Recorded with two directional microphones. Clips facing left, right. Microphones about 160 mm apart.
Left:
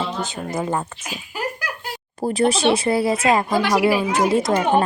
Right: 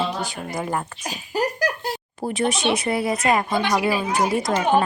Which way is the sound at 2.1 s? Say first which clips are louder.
Left 5 dB; 35° left (ahead or behind).